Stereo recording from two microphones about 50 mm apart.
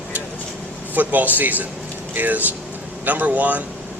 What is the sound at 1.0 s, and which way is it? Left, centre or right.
Speech, right.